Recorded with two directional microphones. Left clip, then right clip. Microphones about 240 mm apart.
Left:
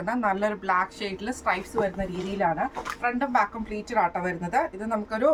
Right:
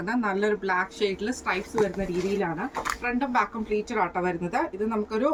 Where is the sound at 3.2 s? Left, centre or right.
Centre.